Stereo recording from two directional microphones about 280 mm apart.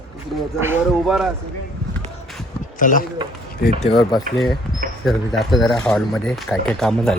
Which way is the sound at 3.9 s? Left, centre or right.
Centre.